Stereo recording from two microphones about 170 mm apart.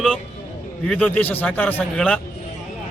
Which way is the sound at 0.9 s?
10° left (ahead or behind).